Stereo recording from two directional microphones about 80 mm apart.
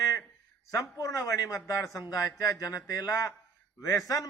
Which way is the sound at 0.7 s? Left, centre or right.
Left.